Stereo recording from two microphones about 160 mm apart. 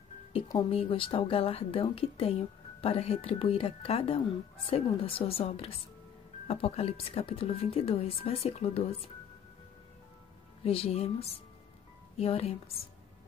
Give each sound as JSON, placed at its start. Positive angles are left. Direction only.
{"t": 0.7, "sound": "a woman's voice", "side_deg": 35}
{"t": 10.6, "sound": "a woman's voice", "side_deg": 35}